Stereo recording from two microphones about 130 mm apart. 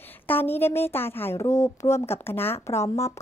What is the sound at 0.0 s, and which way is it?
A woman's voice, 15° left (ahead or behind).